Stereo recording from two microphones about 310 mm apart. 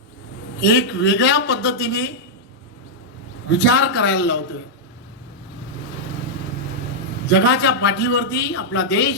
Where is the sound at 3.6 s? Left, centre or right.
Left.